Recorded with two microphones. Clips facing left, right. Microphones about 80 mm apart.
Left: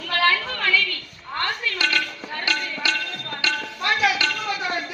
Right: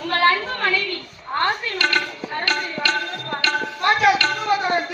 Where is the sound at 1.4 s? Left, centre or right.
Right.